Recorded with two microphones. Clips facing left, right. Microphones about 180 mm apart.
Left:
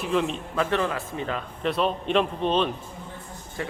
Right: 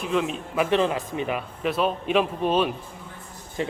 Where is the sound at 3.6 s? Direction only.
20° right (ahead or behind).